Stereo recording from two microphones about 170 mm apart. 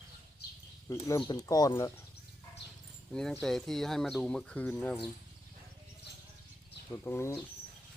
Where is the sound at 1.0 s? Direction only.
20° left (ahead or behind).